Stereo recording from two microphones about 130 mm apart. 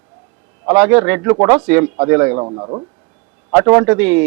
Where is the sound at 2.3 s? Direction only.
35° right (ahead or behind).